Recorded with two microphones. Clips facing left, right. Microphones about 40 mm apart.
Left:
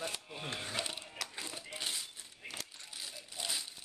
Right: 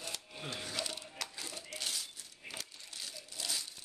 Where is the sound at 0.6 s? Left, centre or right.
Left.